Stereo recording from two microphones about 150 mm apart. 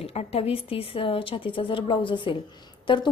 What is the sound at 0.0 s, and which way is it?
A woman's voice, 40° left (ahead or behind).